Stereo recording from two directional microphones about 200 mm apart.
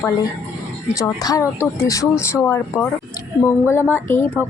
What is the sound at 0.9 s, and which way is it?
Speech, 15° left (ahead or behind).